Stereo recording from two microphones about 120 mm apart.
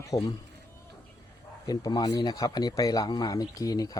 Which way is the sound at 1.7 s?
35° left (ahead or behind).